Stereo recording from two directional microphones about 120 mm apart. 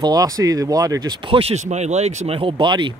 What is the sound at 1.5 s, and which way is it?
Speech, 70° right (ahead or behind).